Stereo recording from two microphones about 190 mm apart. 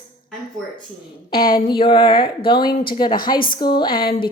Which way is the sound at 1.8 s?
30° left (ahead or behind).